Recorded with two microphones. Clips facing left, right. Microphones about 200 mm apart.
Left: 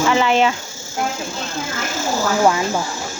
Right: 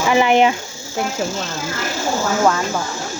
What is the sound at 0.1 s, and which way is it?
Speech, 15° right (ahead or behind).